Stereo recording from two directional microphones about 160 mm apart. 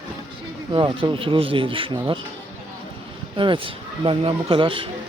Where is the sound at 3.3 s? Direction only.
30° right (ahead or behind).